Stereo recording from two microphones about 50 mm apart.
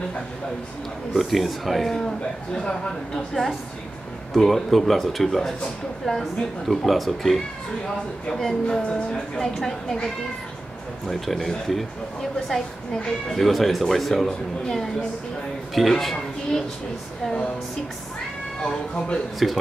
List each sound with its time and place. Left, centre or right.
1.1 s speech: centre
2.0 s a man's voice: centre
6.7 s speech: centre
8.6 s a man's voice: centre
11.1 s speech: centre
17.2 s speech: centre
18.7 s speech: centre
19.4 s speech: centre